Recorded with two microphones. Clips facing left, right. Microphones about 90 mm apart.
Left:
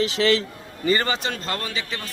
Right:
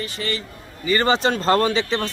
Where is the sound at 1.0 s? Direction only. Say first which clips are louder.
Right 8 dB; 30° right (ahead or behind).